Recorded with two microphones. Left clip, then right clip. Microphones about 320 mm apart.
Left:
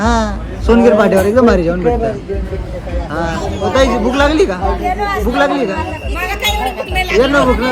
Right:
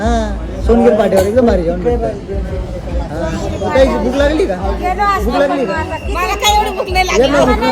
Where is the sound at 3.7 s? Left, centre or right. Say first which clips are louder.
Right 1 dB; left.